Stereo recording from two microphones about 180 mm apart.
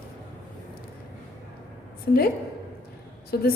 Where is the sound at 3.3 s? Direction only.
60° left (ahead or behind).